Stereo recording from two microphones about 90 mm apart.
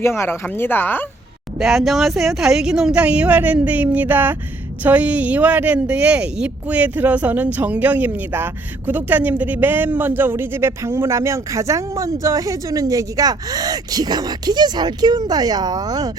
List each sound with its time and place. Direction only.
0.0 s speech: 30° left (ahead or behind)
1.5 s speech: 5° right (ahead or behind); by 16.1 s 45° right (ahead or behind)